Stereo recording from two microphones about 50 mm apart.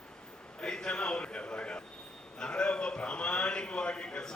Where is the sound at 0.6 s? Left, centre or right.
Centre.